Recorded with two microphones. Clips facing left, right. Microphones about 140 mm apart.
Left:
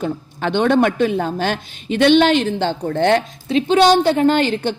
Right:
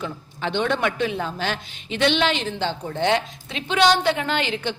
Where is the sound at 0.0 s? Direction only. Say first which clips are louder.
Left 7 dB; 55° left (ahead or behind).